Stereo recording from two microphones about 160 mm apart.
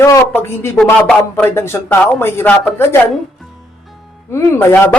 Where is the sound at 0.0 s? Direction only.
15° left (ahead or behind).